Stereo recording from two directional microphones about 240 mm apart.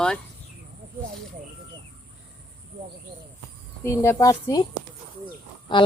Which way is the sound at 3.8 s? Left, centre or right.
Centre.